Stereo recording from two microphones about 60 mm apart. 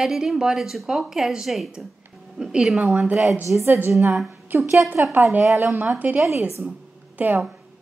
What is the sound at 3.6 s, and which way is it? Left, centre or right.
A woman's voice, right.